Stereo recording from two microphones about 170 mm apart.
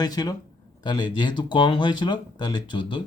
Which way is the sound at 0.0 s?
25° left (ahead or behind).